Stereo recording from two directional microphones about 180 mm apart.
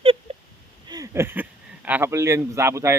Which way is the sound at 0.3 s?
35° right (ahead or behind).